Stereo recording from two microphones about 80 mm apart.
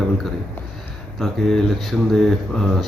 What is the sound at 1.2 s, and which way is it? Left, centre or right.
Speech, centre.